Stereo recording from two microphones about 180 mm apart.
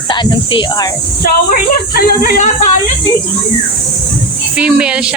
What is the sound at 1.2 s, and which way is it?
Speech, 55° left (ahead or behind).